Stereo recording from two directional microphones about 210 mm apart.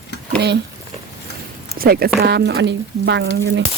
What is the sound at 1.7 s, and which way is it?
Speech, 45° right (ahead or behind).